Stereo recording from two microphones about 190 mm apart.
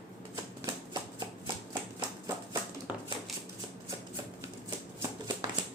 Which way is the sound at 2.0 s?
20° right (ahead or behind).